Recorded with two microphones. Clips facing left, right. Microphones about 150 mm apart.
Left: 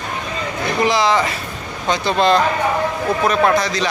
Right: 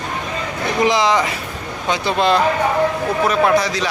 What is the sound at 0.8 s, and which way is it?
A man's voice, 20° right (ahead or behind).